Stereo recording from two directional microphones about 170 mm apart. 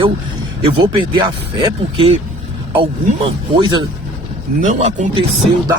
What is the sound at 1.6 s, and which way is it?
Speech, 35° right (ahead or behind).